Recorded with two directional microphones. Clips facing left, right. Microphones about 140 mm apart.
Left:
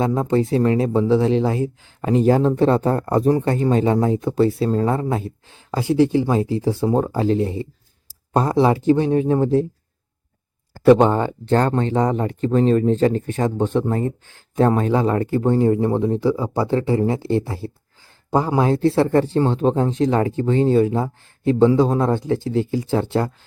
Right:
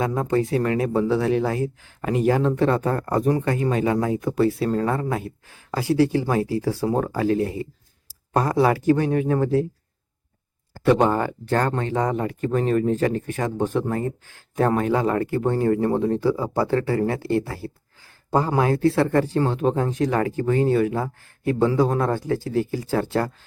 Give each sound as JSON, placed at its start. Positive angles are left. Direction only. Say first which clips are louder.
{"t": 0.0, "sound": "speech", "louder": "left 3 dB", "side_deg": 25}
{"t": 10.8, "sound": "speech", "louder": "left 5 dB", "side_deg": 30}
{"t": 18.3, "sound": "speech", "louder": "left 2 dB", "side_deg": 15}